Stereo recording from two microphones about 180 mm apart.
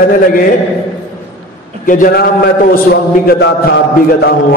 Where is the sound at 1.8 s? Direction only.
50° left (ahead or behind).